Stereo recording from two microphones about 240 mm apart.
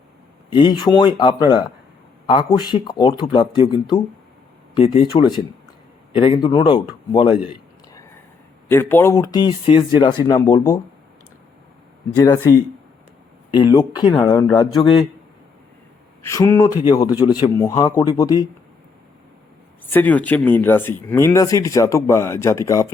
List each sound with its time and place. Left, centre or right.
0.5 s speech: centre
8.7 s speech: centre
12.1 s speech: centre
13.7 s speech: centre
16.2 s speech: centre
19.9 s speech: centre